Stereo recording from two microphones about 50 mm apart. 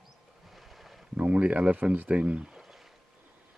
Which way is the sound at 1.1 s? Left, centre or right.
Right.